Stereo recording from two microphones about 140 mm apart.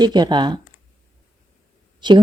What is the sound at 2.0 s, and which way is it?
Speech, 35° right (ahead or behind).